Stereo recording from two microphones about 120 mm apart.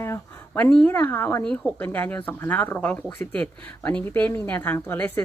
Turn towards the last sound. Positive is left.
turn(degrees=15)  # may be behind; listen again after turning